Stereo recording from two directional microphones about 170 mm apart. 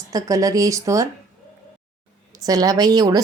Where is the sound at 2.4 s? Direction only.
20° right (ahead or behind).